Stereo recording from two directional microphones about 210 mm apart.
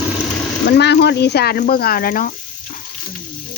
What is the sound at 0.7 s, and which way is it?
Speech, 55° left (ahead or behind).